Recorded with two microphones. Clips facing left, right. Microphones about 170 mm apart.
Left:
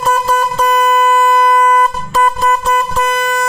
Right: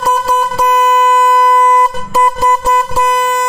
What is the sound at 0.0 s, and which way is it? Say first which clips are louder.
Vehicle horn: even; 10° right (ahead or behind).